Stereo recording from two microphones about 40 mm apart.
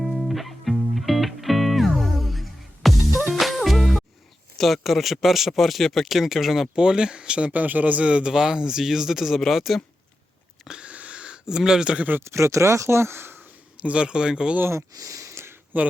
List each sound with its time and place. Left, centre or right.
0.0 s music: centre
4.5 s speech: centre
6.7 s speech: centre
7.5 s a man's voice: right
8.0 s speech: right
8.3 s speech: centre
10.7 s a sound: right
12.9 s speech: right
13.8 s speech: right
15.7 s a man's voice: right